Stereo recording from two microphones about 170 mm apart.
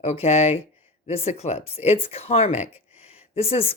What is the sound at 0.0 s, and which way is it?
Speech, 40° left (ahead or behind).